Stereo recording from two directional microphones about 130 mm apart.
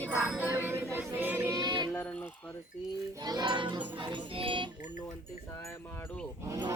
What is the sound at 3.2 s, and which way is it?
Music, 35° right (ahead or behind).